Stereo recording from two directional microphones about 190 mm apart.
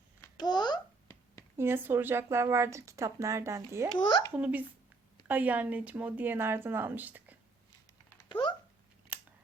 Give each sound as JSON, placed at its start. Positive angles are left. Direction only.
{"t": 0.2, "sound": "babbling", "side_deg": 20}
{"t": 1.5, "sound": "speech", "side_deg": -10}
{"t": 3.9, "sound": "a child's voice", "side_deg": 25}
{"t": 4.4, "sound": "speech", "side_deg": -10}
{"t": 8.3, "sound": "a sound", "side_deg": 25}
{"t": 9.1, "sound": "scissors", "side_deg": -5}